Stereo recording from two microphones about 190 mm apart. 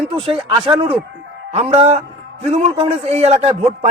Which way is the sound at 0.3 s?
25° right (ahead or behind).